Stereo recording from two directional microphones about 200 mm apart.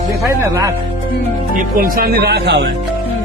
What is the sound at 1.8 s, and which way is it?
Speech, 45° right (ahead or behind).